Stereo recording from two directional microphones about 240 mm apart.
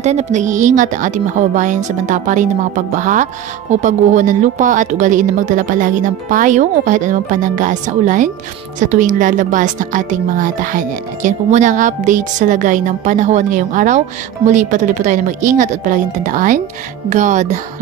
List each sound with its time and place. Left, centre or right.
0.0 s speech: right